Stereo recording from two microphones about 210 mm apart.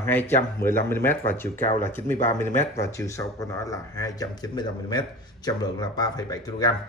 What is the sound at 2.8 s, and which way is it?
Speech, 15° left (ahead or behind).